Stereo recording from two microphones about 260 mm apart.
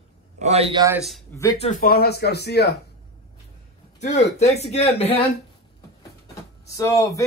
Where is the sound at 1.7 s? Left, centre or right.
Left.